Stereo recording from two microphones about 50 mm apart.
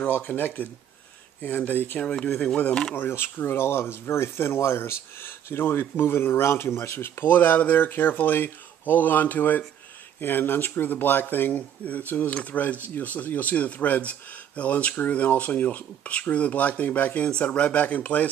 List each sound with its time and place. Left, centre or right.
0.4 s speech: left
2.0 s speech: centre
2.5 s speech: left
3.1 s speech: left
4.7 s speech: left